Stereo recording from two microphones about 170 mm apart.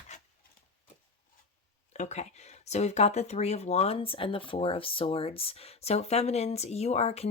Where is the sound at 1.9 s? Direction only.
45° left (ahead or behind).